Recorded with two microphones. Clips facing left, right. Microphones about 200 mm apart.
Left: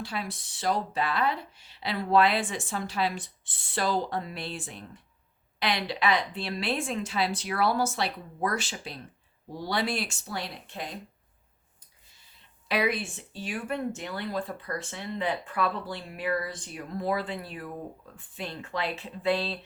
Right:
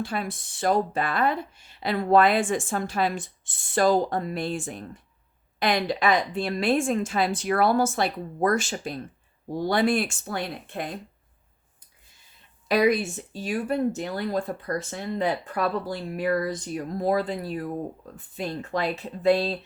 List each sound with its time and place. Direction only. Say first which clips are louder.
0.0 s speech: right 5 dB; 50° right (ahead or behind)
12.6 s speech: right 7 dB; 45° right (ahead or behind)